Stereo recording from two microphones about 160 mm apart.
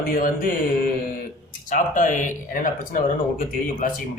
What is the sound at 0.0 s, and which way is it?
Speech, 60° left (ahead or behind).